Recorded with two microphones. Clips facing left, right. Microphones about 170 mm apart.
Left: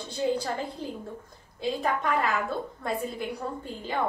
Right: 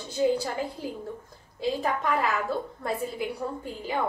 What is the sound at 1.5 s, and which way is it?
A woman's voice, centre (ahead or behind).